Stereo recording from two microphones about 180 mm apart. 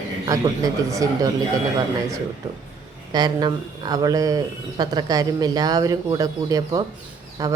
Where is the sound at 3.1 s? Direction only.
25° right (ahead or behind).